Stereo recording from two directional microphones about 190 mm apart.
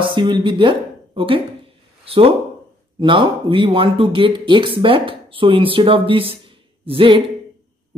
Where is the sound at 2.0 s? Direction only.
30° right (ahead or behind).